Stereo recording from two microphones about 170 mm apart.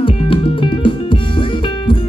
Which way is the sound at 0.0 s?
30° left (ahead or behind).